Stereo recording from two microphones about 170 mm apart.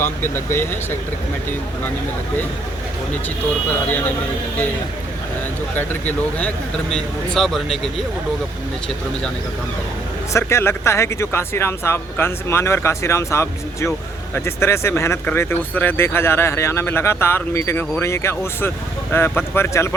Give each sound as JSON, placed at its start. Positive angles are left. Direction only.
{"t": 0.0, "sound": "speech", "side_deg": 15}
{"t": 3.2, "sound": "speech", "side_deg": 10}
{"t": 6.9, "sound": "speech", "side_deg": 5}
{"t": 10.3, "sound": "speech", "side_deg": 15}